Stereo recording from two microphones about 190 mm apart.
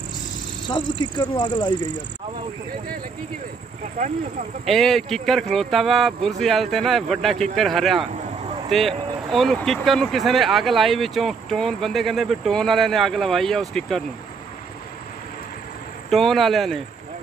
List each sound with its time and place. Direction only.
0.7 s speech: 25° left (ahead or behind)
4.6 s speech: centre (ahead or behind)
16.1 s speech: centre (ahead or behind)